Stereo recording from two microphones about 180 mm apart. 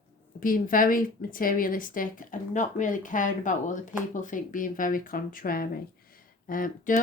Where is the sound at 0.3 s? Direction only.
50° left (ahead or behind).